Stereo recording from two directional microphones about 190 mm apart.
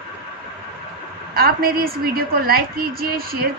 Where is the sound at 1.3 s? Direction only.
50° right (ahead or behind).